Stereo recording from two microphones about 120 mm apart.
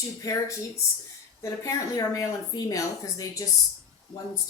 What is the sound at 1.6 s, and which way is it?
Speech, 30° left (ahead or behind).